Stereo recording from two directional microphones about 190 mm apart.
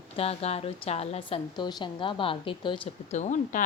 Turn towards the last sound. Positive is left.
turn(degrees=40)  # may be behind; listen again after turning